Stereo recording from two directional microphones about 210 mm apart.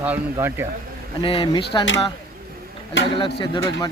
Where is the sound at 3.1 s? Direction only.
25° left (ahead or behind).